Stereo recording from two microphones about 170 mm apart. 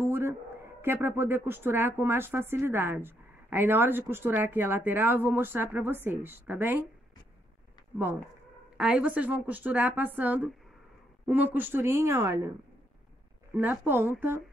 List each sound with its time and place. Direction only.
0.1 s a sound: 15° right (ahead or behind)
1.0 s speech: 15° right (ahead or behind)
8.7 s speech: 5° right (ahead or behind)
13.6 s speech: 10° right (ahead or behind)